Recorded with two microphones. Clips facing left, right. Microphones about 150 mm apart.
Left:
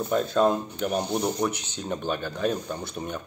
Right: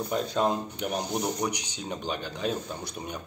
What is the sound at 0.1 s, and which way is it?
Speech, 15° right (ahead or behind).